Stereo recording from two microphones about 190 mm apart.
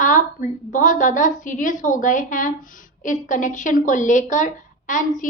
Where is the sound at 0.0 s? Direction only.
45° left (ahead or behind).